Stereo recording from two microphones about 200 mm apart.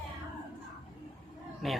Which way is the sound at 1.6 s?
Centre (ahead or behind).